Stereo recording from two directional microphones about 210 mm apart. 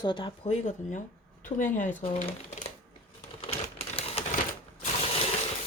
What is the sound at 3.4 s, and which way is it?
Crumpling, 25° left (ahead or behind).